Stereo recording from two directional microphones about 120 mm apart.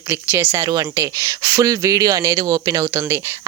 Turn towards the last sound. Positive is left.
turn(degrees=-25)  # may be behind; listen again after turning